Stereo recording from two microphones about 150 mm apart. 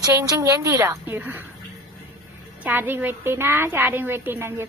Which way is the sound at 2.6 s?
10° right (ahead or behind).